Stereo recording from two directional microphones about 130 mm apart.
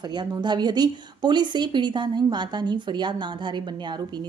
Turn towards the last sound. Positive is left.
turn(degrees=-35)  # may be behind; listen again after turning